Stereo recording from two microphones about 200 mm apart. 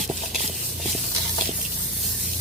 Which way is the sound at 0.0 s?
Centre (ahead or behind).